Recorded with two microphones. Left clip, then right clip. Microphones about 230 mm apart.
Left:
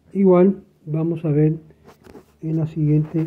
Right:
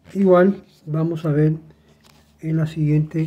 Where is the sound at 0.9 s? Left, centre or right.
Centre.